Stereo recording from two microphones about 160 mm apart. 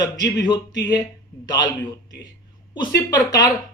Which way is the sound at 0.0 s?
25° left (ahead or behind).